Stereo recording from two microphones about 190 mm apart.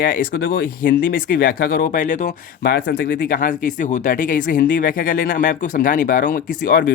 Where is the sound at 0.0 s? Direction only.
50° left (ahead or behind).